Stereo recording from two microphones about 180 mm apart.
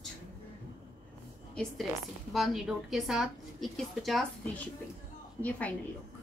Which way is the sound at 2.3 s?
Centre (ahead or behind).